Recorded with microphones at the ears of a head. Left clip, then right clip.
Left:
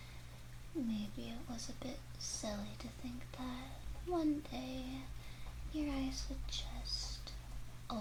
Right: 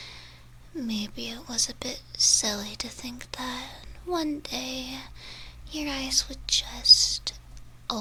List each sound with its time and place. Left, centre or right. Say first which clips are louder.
0.7 s speech: right 9 dB; right